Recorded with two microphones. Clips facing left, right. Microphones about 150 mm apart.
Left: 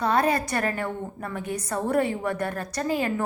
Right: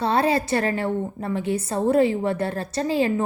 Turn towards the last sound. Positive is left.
turn(degrees=-25)  # may be behind; listen again after turning